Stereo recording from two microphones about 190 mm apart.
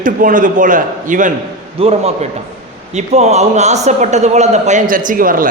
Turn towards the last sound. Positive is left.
turn(degrees=-45)  # may be behind; listen again after turning